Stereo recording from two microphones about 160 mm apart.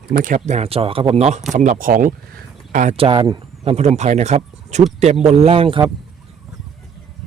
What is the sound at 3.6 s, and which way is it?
Speech, 45° right (ahead or behind).